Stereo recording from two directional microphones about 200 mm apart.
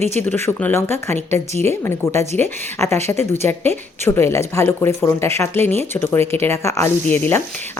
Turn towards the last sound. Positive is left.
turn(degrees=10)  # may be behind; listen again after turning